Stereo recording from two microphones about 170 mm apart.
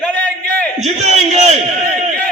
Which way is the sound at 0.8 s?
40° right (ahead or behind).